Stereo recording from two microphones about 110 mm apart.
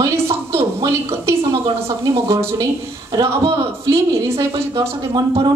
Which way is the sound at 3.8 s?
25° right (ahead or behind).